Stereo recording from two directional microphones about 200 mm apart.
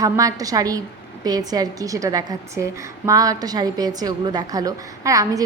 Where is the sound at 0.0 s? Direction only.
15° right (ahead or behind).